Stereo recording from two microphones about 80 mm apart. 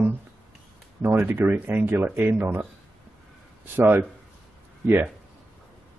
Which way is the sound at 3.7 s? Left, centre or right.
Right.